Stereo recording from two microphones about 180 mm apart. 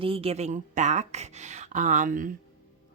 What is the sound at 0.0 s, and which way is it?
Speech, 30° right (ahead or behind).